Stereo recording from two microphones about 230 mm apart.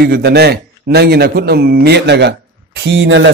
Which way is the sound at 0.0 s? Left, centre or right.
Right.